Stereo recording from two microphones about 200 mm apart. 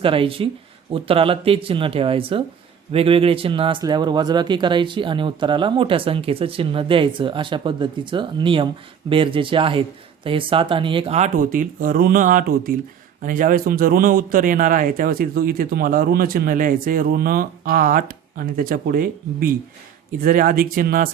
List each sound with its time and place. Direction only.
0.0 s a man's voice: 25° right (ahead or behind); by 21.1 s 45° right (ahead or behind)